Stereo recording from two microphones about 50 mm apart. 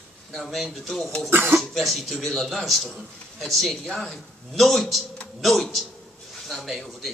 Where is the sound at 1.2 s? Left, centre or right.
Right.